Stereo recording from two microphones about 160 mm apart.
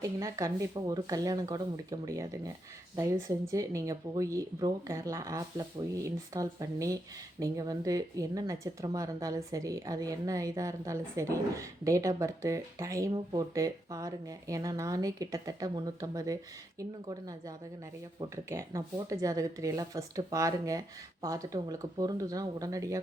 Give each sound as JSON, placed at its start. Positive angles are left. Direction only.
{"t": 0.0, "sound": "speech", "side_deg": -20}
{"t": 18.2, "sound": "speech", "side_deg": -20}